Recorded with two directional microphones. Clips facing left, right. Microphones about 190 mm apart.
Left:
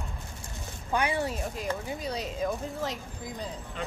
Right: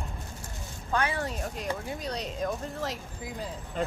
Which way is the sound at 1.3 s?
Centre (ahead or behind).